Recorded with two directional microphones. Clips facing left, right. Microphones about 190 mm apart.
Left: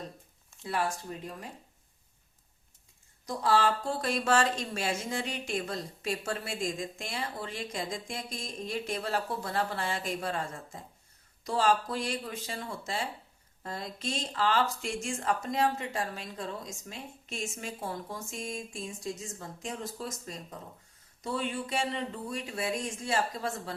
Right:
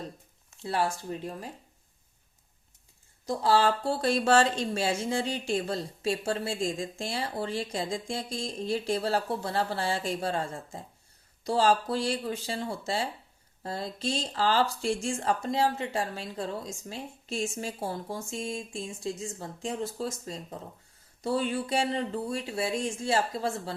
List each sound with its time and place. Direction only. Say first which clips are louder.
0.6 s speech: right 3 dB; 30° right (ahead or behind)
3.2 s speech: right 3 dB; 30° right (ahead or behind)